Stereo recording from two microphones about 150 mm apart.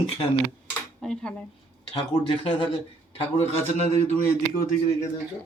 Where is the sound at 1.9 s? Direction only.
40° left (ahead or behind).